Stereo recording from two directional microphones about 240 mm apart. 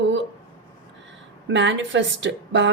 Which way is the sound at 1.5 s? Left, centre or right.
Right.